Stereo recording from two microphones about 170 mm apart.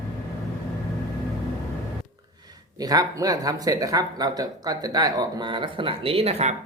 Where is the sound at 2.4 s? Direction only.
20° right (ahead or behind); by 6.5 s 40° right (ahead or behind).